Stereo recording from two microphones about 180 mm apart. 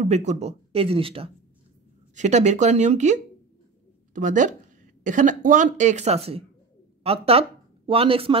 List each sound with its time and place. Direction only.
0.0 s speech: 40° right (ahead or behind)